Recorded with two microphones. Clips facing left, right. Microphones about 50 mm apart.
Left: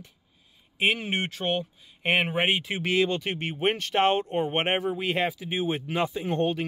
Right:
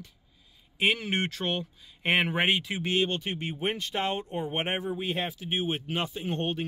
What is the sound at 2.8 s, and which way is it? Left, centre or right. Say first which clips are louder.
Speech: left 3 dB; left.